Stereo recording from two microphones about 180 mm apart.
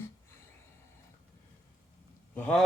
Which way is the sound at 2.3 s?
5° left (ahead or behind).